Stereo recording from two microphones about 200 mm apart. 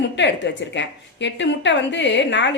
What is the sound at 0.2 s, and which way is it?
A woman's voice, 60° left (ahead or behind).